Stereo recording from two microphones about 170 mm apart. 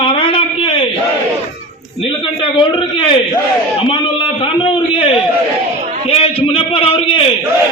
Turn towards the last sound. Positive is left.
turn(degrees=35)  # may be behind; listen again after turning